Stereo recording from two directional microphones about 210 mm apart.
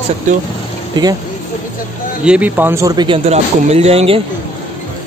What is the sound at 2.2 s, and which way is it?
Speech, 5° right (ahead or behind).